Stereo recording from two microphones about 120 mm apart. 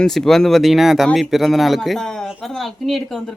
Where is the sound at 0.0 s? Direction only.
5° left (ahead or behind).